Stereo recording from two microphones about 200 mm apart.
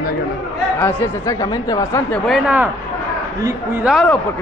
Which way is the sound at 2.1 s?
5° right (ahead or behind).